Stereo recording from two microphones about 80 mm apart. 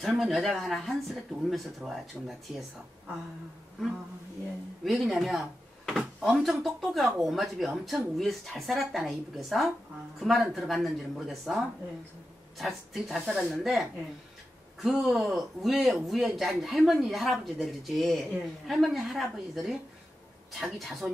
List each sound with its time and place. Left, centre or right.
0.0 s a man's voice: centre
4.8 s a man's voice: centre